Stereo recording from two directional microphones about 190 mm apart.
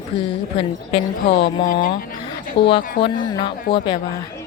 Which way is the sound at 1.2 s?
60° left (ahead or behind).